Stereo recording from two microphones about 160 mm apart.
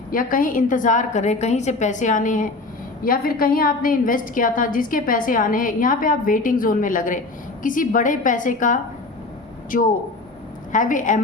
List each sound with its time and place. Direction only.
0.1 s a woman's voice: 60° left (ahead or behind)
3.0 s a woman's voice: 65° left (ahead or behind)